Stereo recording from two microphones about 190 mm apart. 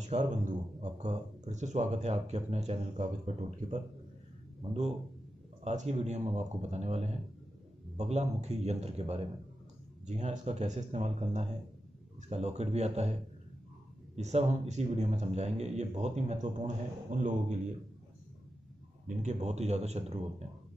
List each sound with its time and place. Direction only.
0.0 s a man's voice: 40° right (ahead or behind)
14.1 s speech: 35° right (ahead or behind)
19.0 s speech: 35° right (ahead or behind)